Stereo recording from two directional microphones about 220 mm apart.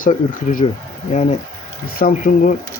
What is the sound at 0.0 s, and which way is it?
Speech, 35° left (ahead or behind).